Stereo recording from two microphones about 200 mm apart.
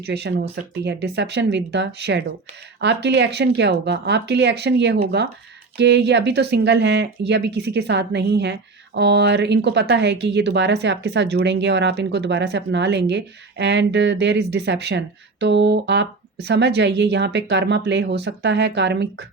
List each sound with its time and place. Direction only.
0.0 s speech: 55° right (ahead or behind)